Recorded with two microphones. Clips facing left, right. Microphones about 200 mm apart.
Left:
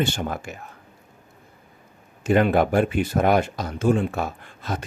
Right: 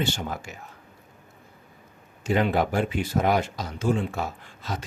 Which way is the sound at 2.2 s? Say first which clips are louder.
Left 5 dB; 55° left (ahead or behind).